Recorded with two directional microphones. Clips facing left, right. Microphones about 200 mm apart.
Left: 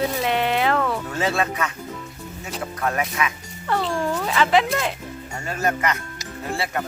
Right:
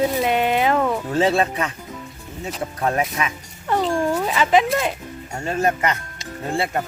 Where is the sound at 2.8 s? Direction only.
30° right (ahead or behind).